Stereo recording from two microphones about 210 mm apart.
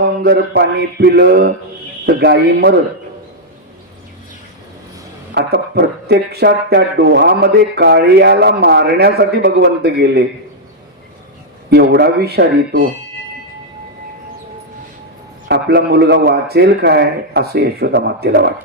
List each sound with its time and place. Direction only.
0.2 s speech: 55° right (ahead or behind)
5.3 s speech: 55° right (ahead or behind)
11.7 s speech: 50° right (ahead or behind)
15.4 s speech: 50° right (ahead or behind)